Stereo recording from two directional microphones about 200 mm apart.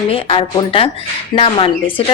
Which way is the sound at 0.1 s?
25° left (ahead or behind).